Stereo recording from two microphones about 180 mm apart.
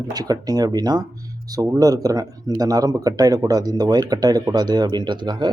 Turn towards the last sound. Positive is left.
turn(degrees=-25)  # may be behind; listen again after turning